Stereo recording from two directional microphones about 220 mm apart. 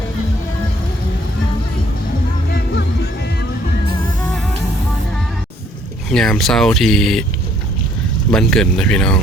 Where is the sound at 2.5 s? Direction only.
50° left (ahead or behind).